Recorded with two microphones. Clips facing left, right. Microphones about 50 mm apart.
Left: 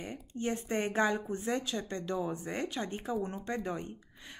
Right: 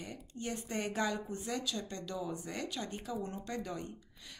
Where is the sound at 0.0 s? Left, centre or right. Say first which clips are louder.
Left 6 dB; left.